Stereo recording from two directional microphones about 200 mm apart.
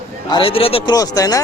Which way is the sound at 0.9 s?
15° left (ahead or behind).